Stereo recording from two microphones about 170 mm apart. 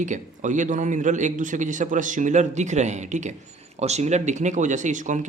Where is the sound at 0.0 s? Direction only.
45° right (ahead or behind).